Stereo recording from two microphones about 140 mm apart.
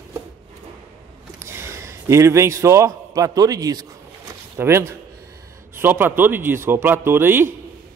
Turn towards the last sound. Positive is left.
turn(degrees=-15)  # may be behind; listen again after turning